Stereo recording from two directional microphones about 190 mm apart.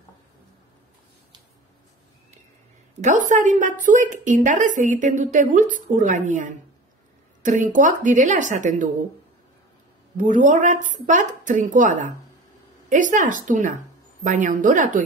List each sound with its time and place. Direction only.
3.0 s a woman's voice: 40° right (ahead or behind)
10.1 s a woman's voice: 45° right (ahead or behind)